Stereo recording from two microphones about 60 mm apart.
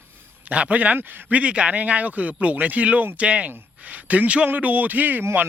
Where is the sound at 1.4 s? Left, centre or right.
Centre.